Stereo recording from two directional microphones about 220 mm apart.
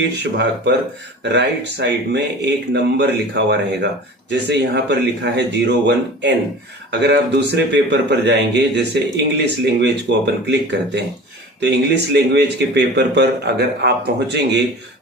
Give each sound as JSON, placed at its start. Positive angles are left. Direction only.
{"t": 0.2, "sound": "speech", "side_deg": -55}